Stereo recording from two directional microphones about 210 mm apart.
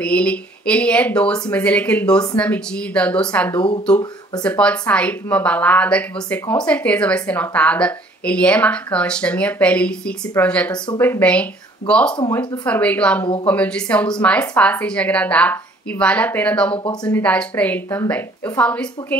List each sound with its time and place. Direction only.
0.0 s a woman's voice: 5° left (ahead or behind)
16.7 s speech: 25° left (ahead or behind)
17.1 s a woman's voice: 5° left (ahead or behind)